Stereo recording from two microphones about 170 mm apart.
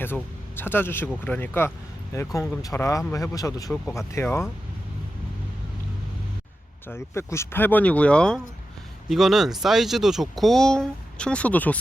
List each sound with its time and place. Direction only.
0.0 s speech: 10° left (ahead or behind)
6.8 s speech: 15° left (ahead or behind)